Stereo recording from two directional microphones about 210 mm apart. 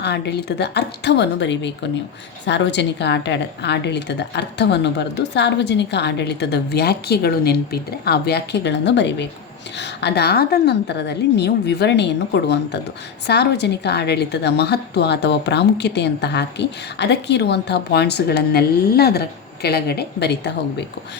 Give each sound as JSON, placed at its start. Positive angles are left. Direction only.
{"t": 0.0, "sound": "a woman's voice", "side_deg": 55}